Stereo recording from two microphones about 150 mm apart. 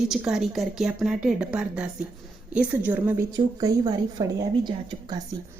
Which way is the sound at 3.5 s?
25° right (ahead or behind).